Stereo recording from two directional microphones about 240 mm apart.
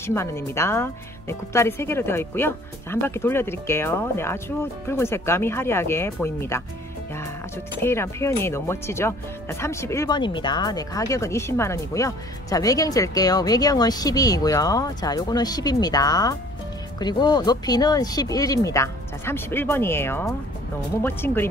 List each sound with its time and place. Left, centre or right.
0.0 s speech: centre
7.8 s speech: centre